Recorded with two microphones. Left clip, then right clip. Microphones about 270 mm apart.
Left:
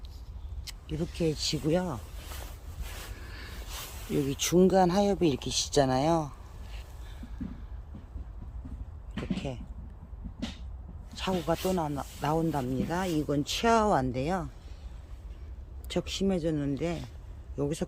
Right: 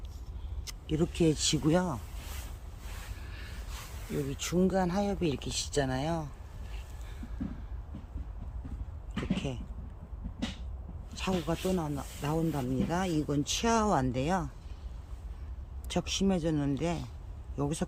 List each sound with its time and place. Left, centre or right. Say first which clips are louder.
0.6 s speech: right 4 dB; centre
3.2 s speech: left 3 dB; centre
11.1 s speech: left 3 dB; centre
15.9 s speech: left 1 dB; centre